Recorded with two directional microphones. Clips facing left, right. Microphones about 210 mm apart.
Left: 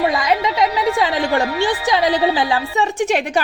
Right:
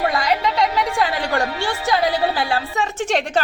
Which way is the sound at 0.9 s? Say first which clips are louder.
Left 3 dB; 20° left (ahead or behind).